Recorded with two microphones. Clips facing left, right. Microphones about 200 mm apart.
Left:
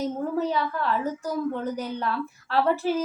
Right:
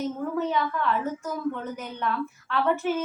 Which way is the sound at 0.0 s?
35° left (ahead or behind).